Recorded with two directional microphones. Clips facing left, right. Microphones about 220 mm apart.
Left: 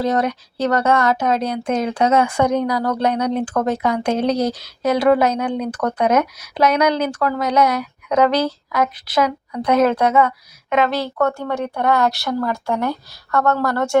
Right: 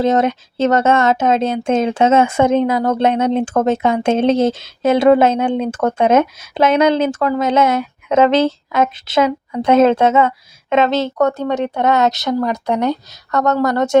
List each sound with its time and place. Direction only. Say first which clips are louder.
0.0 s speech: right 4 dB; 25° right (ahead or behind)